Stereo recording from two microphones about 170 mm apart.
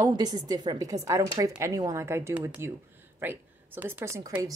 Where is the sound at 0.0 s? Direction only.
25° right (ahead or behind).